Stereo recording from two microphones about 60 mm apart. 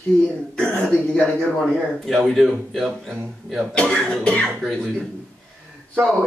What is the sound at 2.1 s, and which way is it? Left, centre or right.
Speech, centre.